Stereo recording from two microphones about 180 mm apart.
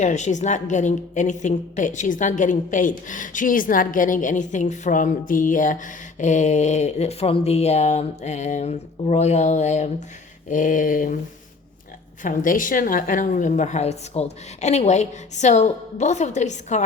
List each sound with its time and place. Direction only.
0.0 s a woman's voice: 40° left (ahead or behind)
12.2 s a woman's voice: 45° left (ahead or behind)